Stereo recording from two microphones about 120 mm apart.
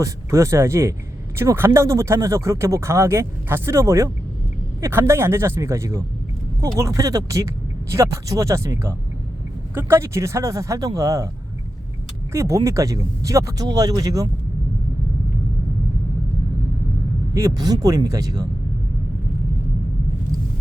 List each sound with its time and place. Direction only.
0.0 s speech: 25° right (ahead or behind)
12.3 s speech: 25° right (ahead or behind)
17.3 s speech: 30° right (ahead or behind)